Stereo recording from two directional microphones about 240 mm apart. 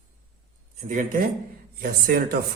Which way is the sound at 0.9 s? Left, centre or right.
Right.